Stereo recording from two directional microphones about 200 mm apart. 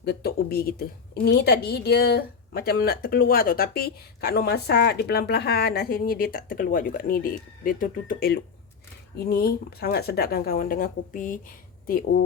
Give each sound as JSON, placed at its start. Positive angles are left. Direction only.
{"t": 0.0, "sound": "a woman's voice", "side_deg": 55}